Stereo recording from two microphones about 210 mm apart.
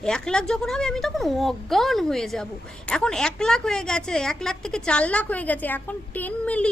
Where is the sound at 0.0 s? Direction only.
5° left (ahead or behind).